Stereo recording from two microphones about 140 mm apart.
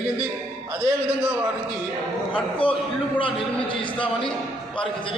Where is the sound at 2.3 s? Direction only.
40° left (ahead or behind).